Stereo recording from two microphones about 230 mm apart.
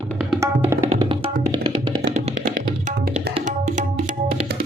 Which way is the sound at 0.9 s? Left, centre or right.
Right.